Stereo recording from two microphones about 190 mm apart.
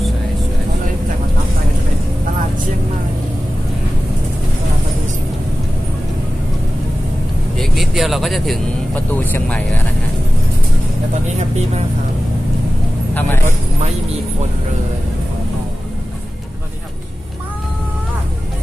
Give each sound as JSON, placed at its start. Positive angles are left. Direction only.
{"t": 7.5, "sound": "speech", "side_deg": 0}
{"t": 11.2, "sound": "speech", "side_deg": -35}